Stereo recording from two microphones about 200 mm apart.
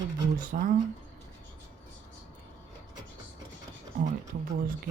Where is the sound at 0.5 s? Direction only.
40° right (ahead or behind).